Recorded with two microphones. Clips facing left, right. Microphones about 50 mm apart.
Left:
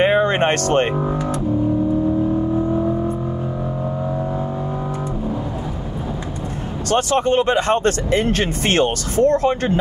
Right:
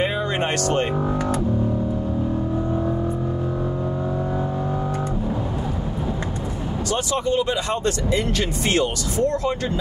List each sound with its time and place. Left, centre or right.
0.0 s music: left
6.9 s speech: left